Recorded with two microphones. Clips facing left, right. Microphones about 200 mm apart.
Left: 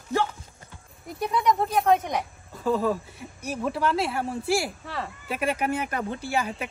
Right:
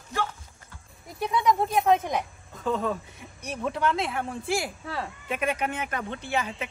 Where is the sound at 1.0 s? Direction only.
Centre (ahead or behind).